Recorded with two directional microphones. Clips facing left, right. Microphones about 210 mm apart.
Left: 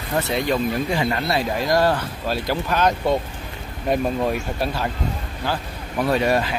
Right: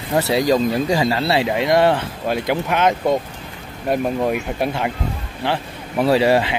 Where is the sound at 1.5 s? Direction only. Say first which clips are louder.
Right 3 dB; 25° right (ahead or behind).